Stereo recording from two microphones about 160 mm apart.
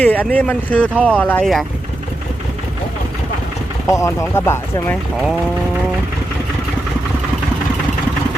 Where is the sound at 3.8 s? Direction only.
20° left (ahead or behind).